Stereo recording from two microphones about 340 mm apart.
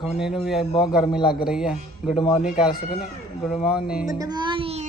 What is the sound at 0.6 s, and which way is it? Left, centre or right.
Speech, centre.